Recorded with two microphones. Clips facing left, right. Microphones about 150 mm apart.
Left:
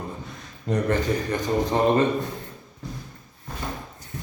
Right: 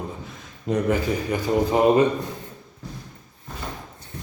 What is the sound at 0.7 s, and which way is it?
Speech, 5° right (ahead or behind).